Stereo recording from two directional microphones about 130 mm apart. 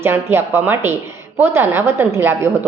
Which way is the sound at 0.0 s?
20° right (ahead or behind).